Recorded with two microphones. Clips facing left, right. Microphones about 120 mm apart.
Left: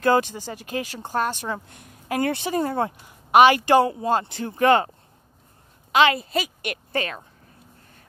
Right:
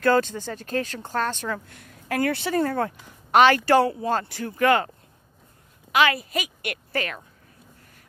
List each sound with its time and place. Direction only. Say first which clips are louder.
0.0 s a woman's voice: even; 15° left (ahead or behind)